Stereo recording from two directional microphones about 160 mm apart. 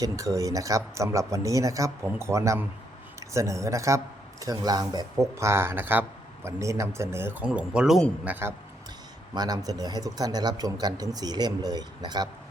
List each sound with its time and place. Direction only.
0.0 s a man's voice: 20° right (ahead or behind); by 8.3 s centre (ahead or behind)
8.3 s a man's voice: 15° right (ahead or behind)
9.3 s speech: 25° right (ahead or behind)